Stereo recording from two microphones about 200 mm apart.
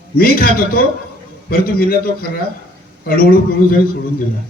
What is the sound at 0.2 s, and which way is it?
A man's voice, 45° left (ahead or behind).